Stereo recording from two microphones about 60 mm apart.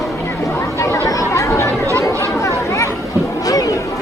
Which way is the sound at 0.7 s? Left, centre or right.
Left.